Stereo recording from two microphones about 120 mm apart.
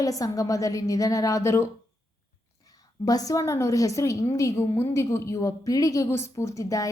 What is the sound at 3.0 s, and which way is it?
A woman's voice, 30° left (ahead or behind).